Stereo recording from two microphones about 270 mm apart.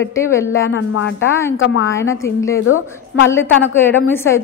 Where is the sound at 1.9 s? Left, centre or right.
Centre.